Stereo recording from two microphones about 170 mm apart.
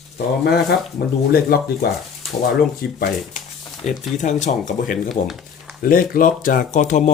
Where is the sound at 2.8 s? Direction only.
60° left (ahead or behind).